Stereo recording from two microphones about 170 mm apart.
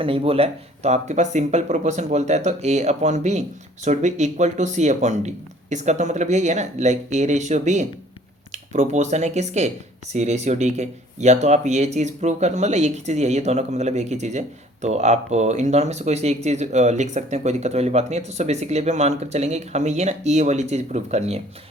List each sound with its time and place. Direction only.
0.0 s speech: 35° right (ahead or behind)